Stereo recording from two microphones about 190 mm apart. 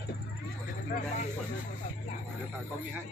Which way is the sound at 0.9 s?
45° left (ahead or behind).